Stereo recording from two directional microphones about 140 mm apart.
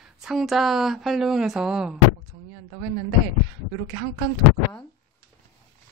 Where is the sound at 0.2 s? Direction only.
Centre (ahead or behind).